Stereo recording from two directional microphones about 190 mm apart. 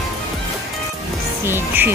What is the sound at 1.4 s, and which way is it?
Speech, 10° right (ahead or behind).